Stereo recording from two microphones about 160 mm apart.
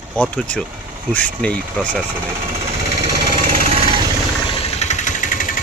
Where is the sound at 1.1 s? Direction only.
10° left (ahead or behind).